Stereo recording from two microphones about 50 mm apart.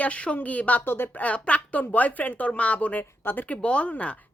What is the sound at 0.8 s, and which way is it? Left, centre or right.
Speech, left.